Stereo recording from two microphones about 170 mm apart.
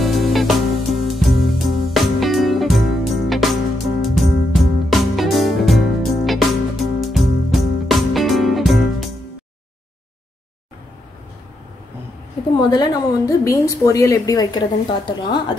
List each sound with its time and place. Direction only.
0.0 s music: centre (ahead or behind)
12.5 s a woman's voice: 25° left (ahead or behind)